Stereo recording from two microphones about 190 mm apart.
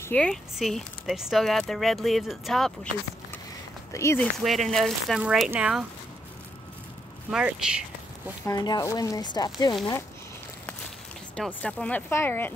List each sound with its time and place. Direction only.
0.0 s speech: 5° left (ahead or behind)
3.9 s speech: 15° left (ahead or behind)
4.4 s speech: centre (ahead or behind)
7.2 s speech: 5° right (ahead or behind)
8.5 s speech: 20° left (ahead or behind)
11.3 s speech: 5° left (ahead or behind)